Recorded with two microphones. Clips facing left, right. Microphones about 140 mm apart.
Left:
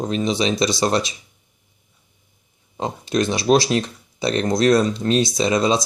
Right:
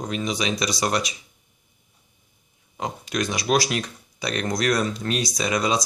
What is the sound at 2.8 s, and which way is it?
Speech, 30° left (ahead or behind).